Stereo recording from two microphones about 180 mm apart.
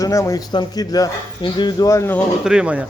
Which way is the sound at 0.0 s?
20° left (ahead or behind).